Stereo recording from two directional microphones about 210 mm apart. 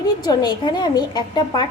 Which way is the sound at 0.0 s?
20° left (ahead or behind).